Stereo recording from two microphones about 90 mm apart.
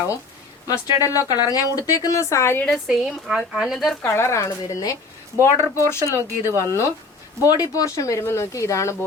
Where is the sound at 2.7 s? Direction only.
5° right (ahead or behind).